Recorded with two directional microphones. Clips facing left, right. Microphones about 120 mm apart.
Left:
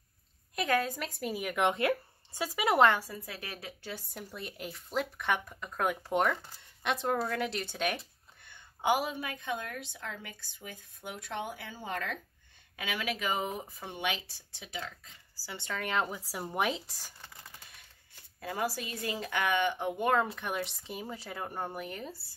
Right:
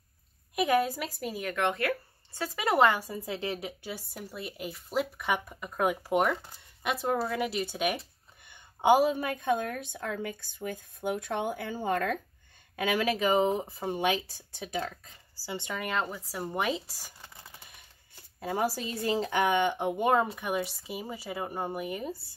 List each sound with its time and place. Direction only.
0.6 s speech: 10° right (ahead or behind)
3.0 s a woman's voice: 20° right (ahead or behind)
8.8 s a woman's voice: 40° right (ahead or behind)
15.4 s a woman's voice: 15° right (ahead or behind)
15.8 s speech: centre (ahead or behind)
17.0 s computer keyboard: 10° right (ahead or behind)
18.4 s a woman's voice: 25° right (ahead or behind)